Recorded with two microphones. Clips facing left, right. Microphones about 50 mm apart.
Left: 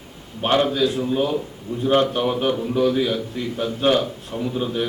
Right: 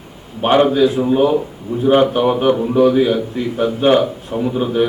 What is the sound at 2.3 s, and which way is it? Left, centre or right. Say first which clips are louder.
A man's voice: right 7 dB; right.